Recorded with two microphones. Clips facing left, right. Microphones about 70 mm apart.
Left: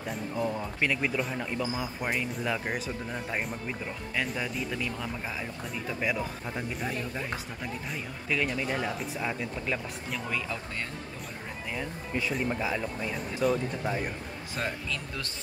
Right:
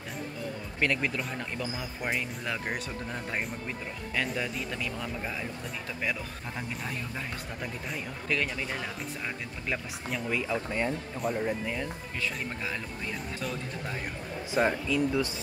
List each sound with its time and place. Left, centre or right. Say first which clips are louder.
0.7 s speech: right 2 dB; centre
6.8 s speech: left 3 dB; centre
10.5 s speech: right 6 dB; centre
12.2 s speech: left 5 dB; centre
14.5 s speech: right 8 dB; centre